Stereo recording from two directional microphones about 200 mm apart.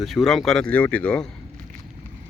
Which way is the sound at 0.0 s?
Centre (ahead or behind).